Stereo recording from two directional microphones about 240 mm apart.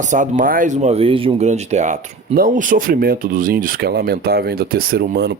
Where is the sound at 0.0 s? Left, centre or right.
Right.